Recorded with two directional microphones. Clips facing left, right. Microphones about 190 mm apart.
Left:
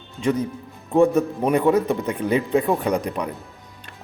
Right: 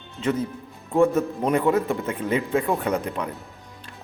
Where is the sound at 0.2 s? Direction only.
15° left (ahead or behind).